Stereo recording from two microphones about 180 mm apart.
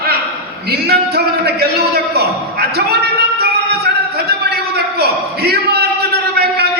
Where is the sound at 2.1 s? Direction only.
65° right (ahead or behind).